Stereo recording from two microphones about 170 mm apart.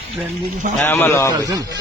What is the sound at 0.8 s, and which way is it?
Speech, 10° left (ahead or behind).